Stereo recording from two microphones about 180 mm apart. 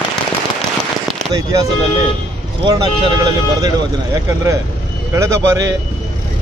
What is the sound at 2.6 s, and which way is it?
Speech, 25° right (ahead or behind).